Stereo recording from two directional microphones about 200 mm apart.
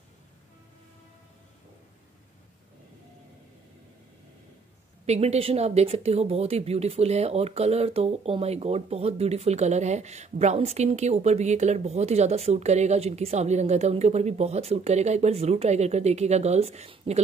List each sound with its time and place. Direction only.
5.0 s speech: 30° right (ahead or behind)